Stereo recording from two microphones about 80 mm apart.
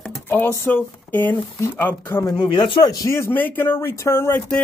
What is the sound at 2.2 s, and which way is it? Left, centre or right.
Speech, left.